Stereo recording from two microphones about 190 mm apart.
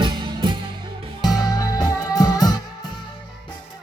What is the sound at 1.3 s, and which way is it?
Music, 20° left (ahead or behind).